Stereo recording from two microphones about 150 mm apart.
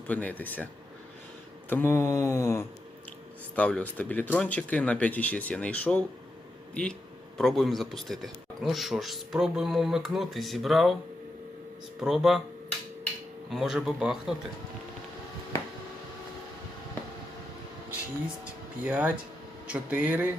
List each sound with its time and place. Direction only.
0.1 s speech: 10° left (ahead or behind)
1.7 s speech: 15° left (ahead or behind)
3.5 s speech: 5° left (ahead or behind)
7.3 s a man's voice: centre (ahead or behind)
11.9 s a man's voice: 5° right (ahead or behind)
13.5 s a man's voice: 5° right (ahead or behind)
18.9 s speech: 10° right (ahead or behind)